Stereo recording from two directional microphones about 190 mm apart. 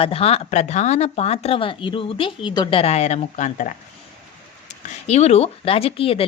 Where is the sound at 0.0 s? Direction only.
30° left (ahead or behind).